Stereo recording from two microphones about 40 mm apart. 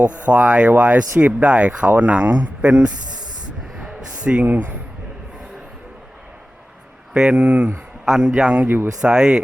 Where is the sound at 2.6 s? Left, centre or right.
Right.